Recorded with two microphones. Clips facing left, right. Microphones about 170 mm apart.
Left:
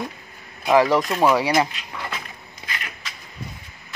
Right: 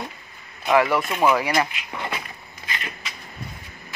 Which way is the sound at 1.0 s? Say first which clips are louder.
Left 1 dB; centre (ahead or behind).